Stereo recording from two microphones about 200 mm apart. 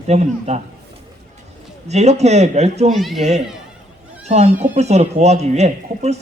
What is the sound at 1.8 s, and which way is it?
Speech, 35° right (ahead or behind).